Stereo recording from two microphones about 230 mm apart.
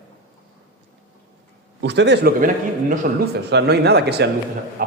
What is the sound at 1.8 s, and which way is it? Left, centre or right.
A man's voice, right.